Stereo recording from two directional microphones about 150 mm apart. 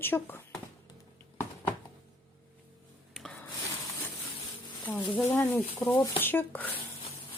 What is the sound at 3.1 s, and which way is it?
Rub, 5° left (ahead or behind).